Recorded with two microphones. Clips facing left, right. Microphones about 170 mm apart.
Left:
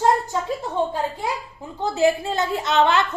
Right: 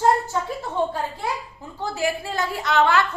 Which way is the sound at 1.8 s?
20° left (ahead or behind).